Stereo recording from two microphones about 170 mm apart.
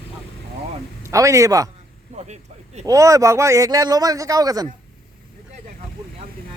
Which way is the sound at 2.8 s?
20° right (ahead or behind).